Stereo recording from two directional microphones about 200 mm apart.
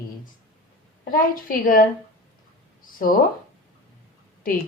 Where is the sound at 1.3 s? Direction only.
45° left (ahead or behind).